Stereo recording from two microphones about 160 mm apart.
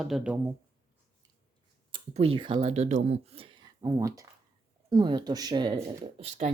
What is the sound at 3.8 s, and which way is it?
A woman's voice, 20° right (ahead or behind).